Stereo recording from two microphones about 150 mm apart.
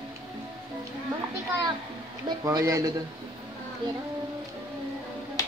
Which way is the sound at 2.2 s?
20° right (ahead or behind).